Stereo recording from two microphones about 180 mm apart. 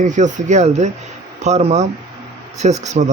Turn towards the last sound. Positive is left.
turn(degrees=-40)  # may be behind; listen again after turning